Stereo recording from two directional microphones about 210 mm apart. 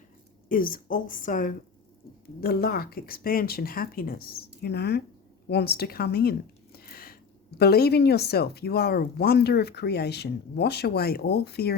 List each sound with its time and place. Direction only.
0.4 s a woman's voice: 40° left (ahead or behind)
6.7 s a sound: 45° left (ahead or behind)
7.6 s speech: 50° left (ahead or behind)